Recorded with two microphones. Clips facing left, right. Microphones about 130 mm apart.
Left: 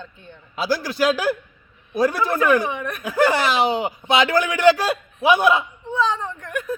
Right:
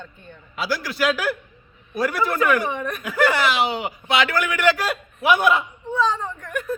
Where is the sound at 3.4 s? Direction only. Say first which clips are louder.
Left 2 dB; 40° left (ahead or behind).